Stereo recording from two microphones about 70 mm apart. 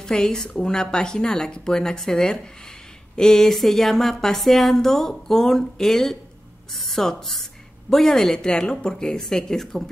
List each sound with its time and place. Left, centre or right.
0.0 s speech: centre